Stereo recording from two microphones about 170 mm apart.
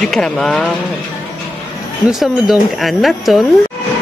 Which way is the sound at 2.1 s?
Centre (ahead or behind).